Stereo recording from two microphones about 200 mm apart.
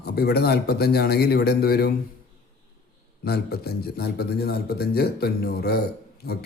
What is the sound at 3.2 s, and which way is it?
Speech, 50° left (ahead or behind).